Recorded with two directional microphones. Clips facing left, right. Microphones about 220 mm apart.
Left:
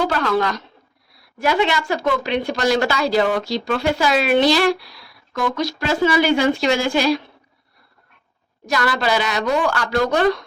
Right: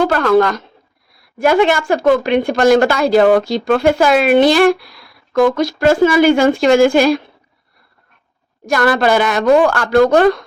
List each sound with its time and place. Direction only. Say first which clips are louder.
0.0 s a woman's voice: right 7 dB; 50° right (ahead or behind)
8.6 s a woman's voice: right 7 dB; 50° right (ahead or behind)